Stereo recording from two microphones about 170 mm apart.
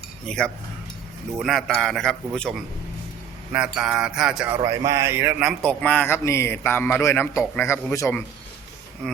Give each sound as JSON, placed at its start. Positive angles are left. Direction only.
{"t": 0.3, "sound": "a man's voice", "side_deg": 5}
{"t": 3.5, "sound": "a man's voice", "side_deg": -5}
{"t": 4.5, "sound": "a man's voice", "side_deg": -20}
{"t": 5.6, "sound": "a man's voice", "side_deg": 10}
{"t": 9.0, "sound": "a man's voice", "side_deg": 0}